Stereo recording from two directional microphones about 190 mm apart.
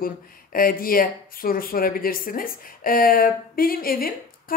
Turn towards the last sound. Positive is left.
turn(degrees=50)  # may be behind; listen again after turning